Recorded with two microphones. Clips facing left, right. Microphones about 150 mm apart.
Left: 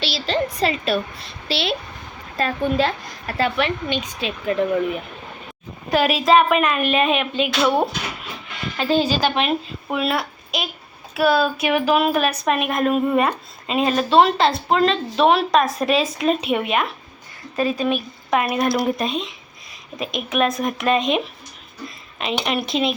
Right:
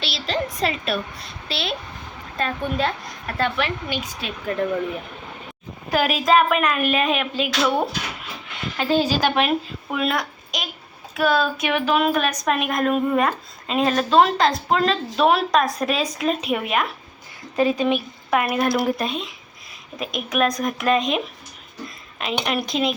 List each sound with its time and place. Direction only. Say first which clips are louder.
0.0 s a sound: left 3 dB; centre (ahead or behind)
1.5 s speech: left 4 dB; centre (ahead or behind)
8.8 s speech: left 1 dB; 10° right (ahead or behind)
17.6 s speech: right 1 dB; 20° right (ahead or behind)
18.3 s a woman's voice: left 1 dB; 5° right (ahead or behind)